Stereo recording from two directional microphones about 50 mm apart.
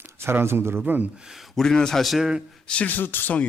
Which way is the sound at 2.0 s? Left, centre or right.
Centre.